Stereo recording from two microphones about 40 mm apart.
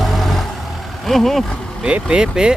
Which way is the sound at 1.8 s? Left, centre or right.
Right.